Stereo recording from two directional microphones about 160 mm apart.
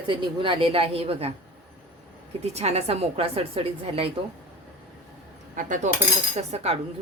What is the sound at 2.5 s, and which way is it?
A woman's voice, 40° right (ahead or behind).